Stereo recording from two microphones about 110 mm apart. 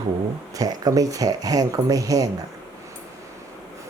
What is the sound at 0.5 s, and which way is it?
Speech, 35° right (ahead or behind).